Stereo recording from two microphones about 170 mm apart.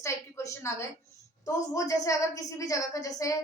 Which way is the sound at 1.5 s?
20° left (ahead or behind).